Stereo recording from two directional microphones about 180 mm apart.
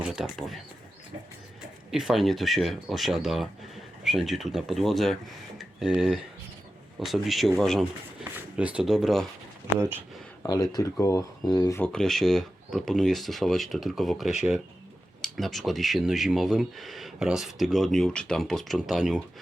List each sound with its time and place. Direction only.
0.0 s speech: 5° right (ahead or behind)
1.9 s speech: centre (ahead or behind)
10.4 s speech: 20° left (ahead or behind)
11.8 s speech: 5° left (ahead or behind)